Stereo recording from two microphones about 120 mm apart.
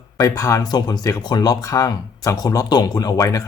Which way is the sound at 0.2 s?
25° left (ahead or behind).